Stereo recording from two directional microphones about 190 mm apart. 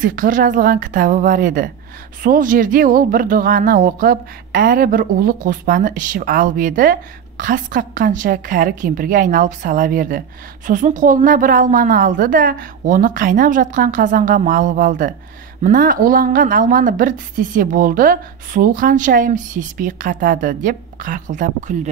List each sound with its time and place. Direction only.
0.0 s speech: 45° right (ahead or behind)